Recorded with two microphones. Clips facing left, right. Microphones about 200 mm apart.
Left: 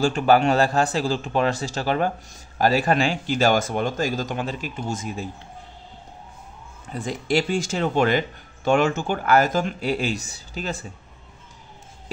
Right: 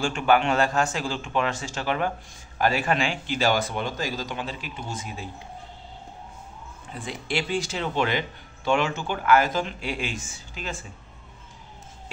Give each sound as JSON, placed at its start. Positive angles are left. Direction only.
{"t": 0.0, "sound": "a man's voice", "side_deg": 35}
{"t": 6.9, "sound": "speech", "side_deg": 40}